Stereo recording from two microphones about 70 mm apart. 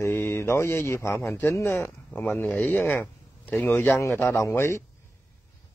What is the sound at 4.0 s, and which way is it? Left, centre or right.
Speech, left.